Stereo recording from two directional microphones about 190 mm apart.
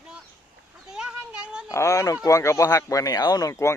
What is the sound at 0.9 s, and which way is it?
Speech, 5° right (ahead or behind).